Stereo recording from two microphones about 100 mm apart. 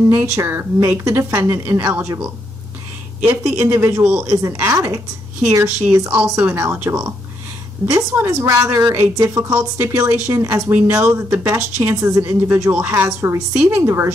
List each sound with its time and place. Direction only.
0.0 s speech: 30° right (ahead or behind)
3.2 s speech: 20° right (ahead or behind)
4.3 s speech: 30° right (ahead or behind); by 11.5 s 15° right (ahead or behind)
11.5 s speech: 30° right (ahead or behind)